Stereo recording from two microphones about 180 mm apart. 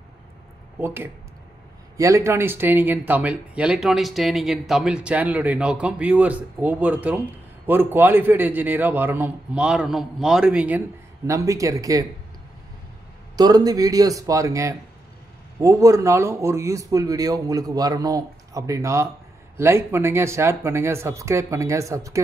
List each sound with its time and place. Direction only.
0.7 s speech: 10° right (ahead or behind)
11.2 s speech: 20° right (ahead or behind)
13.4 s speech: 20° right (ahead or behind)